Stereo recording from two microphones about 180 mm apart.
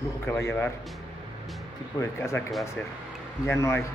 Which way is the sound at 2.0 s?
15° left (ahead or behind).